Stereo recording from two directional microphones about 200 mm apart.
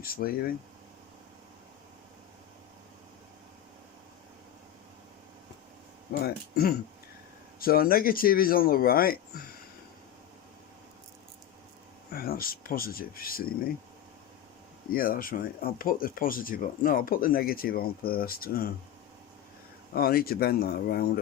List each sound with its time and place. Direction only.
0.0 s speech: 45° left (ahead or behind)
6.1 s speech: 50° left (ahead or behind)
12.1 s speech: 50° left (ahead or behind)
14.8 s speech: 45° left (ahead or behind)
19.9 s speech: 50° left (ahead or behind)